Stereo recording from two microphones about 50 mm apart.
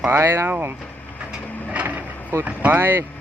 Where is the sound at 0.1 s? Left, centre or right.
Right.